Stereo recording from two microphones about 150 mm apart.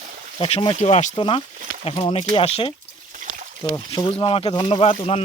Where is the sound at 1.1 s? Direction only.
35° left (ahead or behind).